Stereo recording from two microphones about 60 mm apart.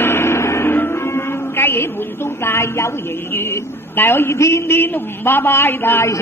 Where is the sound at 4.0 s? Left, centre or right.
Left.